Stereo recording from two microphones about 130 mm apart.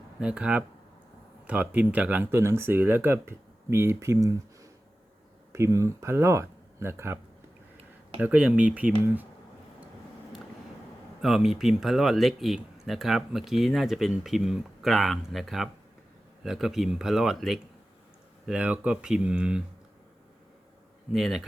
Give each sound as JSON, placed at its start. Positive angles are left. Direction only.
{"t": 0.2, "sound": "speech", "side_deg": -10}
{"t": 8.2, "sound": "speech", "side_deg": -10}
{"t": 11.2, "sound": "speech", "side_deg": -5}
{"t": 21.1, "sound": "speech", "side_deg": 0}